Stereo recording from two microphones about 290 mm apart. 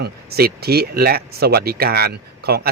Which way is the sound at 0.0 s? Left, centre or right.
Right.